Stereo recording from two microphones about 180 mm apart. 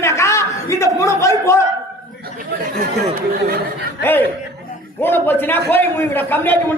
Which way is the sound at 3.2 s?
55° right (ahead or behind).